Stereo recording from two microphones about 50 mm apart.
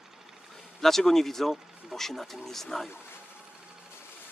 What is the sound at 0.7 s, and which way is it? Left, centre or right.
Speech, centre.